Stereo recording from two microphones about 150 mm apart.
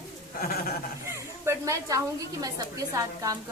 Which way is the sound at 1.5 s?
20° right (ahead or behind).